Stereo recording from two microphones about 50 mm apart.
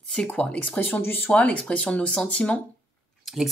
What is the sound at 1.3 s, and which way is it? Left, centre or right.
Speech, left.